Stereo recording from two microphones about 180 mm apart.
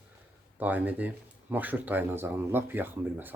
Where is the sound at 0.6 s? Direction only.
10° right (ahead or behind).